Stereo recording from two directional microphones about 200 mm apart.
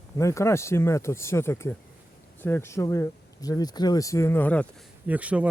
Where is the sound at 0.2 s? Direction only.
15° left (ahead or behind).